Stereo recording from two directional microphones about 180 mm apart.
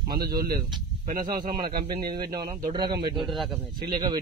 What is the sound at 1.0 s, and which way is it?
Speech, 50° right (ahead or behind).